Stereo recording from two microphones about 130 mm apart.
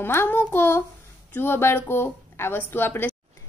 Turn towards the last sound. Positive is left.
turn(degrees=15)  # may be behind; listen again after turning